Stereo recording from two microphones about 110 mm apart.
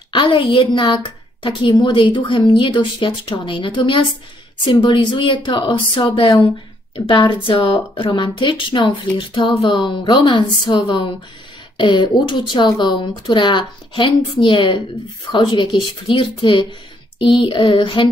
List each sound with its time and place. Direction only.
0.1 s a woman's voice: 45° left (ahead or behind)
7.1 s a woman's voice: 50° left (ahead or behind)